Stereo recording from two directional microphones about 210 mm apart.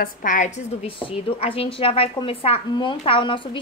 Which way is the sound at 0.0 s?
40° left (ahead or behind).